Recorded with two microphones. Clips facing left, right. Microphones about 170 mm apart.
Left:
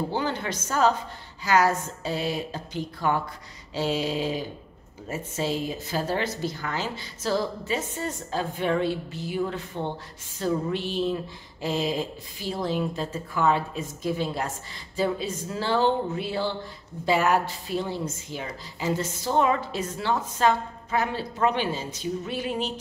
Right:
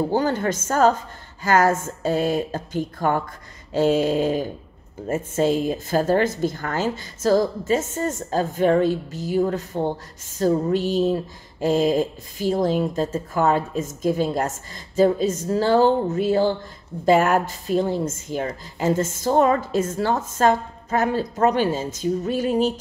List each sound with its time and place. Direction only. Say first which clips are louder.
0.1 s a woman's voice: right 7 dB; 45° right (ahead or behind)